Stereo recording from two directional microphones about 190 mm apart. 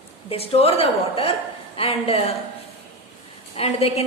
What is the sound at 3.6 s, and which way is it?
Speech, 30° left (ahead or behind).